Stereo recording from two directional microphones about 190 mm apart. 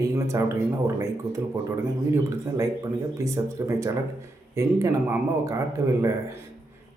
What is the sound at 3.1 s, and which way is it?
Speech, 15° right (ahead or behind).